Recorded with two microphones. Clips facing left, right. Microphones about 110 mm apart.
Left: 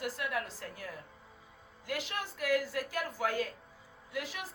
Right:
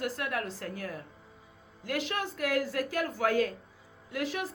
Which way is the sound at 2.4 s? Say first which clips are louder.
Right 1 dB; 50° right (ahead or behind).